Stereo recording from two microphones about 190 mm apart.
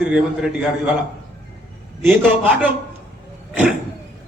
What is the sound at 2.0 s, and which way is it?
Speech, 10° right (ahead or behind).